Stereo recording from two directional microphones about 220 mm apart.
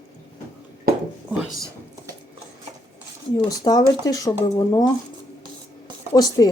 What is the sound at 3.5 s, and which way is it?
Speech, 15° left (ahead or behind).